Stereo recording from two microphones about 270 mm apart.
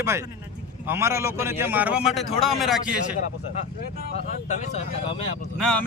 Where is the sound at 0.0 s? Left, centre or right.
Centre.